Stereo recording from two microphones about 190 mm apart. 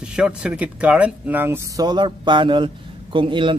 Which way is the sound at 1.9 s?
25° right (ahead or behind).